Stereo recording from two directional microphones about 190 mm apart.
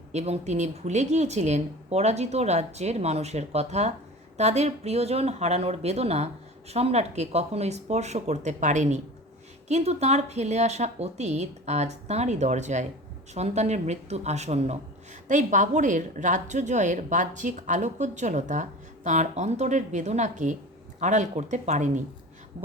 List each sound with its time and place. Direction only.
0.1 s a woman's voice: 35° right (ahead or behind)